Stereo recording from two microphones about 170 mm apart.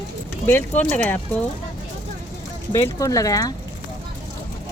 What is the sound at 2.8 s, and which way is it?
Speech, 20° left (ahead or behind).